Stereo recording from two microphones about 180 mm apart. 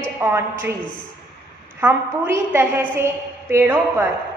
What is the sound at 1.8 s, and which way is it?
A woman's voice, 15° right (ahead or behind).